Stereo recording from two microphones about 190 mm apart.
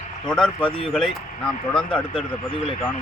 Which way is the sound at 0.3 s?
5° left (ahead or behind).